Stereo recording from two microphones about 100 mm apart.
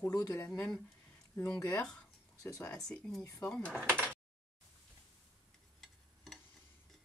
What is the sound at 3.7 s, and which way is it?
Speech, 15° right (ahead or behind).